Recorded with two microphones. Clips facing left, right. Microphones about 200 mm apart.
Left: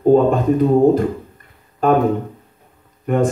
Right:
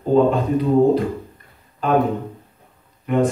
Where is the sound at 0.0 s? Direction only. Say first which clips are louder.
Left 3 dB; 45° left (ahead or behind).